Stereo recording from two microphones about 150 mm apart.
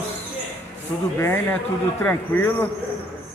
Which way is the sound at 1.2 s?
15° left (ahead or behind).